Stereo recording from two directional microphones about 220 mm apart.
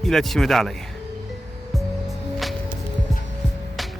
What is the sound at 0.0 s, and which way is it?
Speech, centre (ahead or behind).